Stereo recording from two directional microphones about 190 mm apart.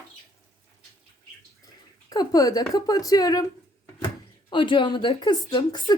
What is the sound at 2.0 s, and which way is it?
A woman's voice, 20° left (ahead or behind).